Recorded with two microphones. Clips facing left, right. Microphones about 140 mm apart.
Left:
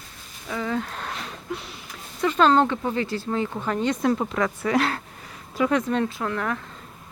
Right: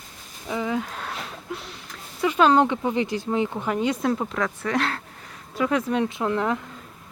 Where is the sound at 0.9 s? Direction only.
Centre (ahead or behind).